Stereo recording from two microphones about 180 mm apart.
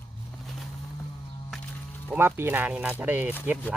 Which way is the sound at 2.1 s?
15° right (ahead or behind).